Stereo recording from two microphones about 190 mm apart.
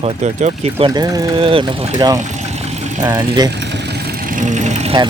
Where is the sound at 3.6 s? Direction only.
60° right (ahead or behind); by 5.0 s 35° right (ahead or behind).